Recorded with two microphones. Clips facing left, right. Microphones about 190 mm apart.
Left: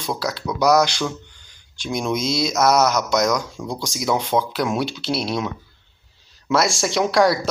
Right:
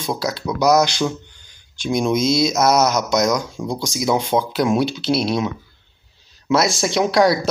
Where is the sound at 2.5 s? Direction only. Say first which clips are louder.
Right 1 dB; 25° right (ahead or behind).